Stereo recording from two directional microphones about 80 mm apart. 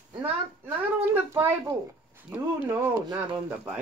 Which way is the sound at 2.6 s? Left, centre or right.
Right.